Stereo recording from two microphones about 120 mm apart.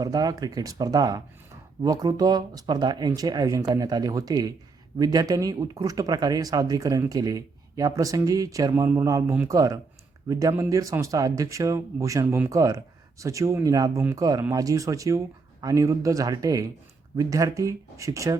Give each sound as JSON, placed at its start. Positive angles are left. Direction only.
{"t": 0.0, "sound": "speech", "side_deg": -30}